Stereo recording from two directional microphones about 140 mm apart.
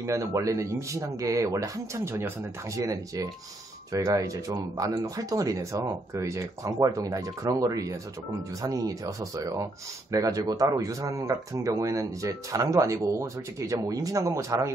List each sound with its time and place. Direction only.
0.0 s speech: 20° right (ahead or behind)